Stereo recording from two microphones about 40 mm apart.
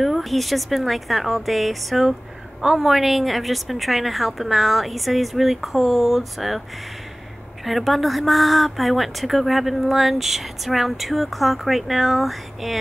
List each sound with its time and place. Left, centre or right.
0.0 s speech: centre
2.6 s a woman's voice: centre
2.9 s speech: centre
7.6 s speech: centre